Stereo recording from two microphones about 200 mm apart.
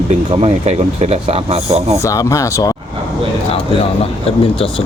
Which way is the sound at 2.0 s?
15° left (ahead or behind).